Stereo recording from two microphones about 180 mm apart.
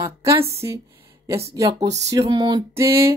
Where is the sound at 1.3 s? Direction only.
15° right (ahead or behind).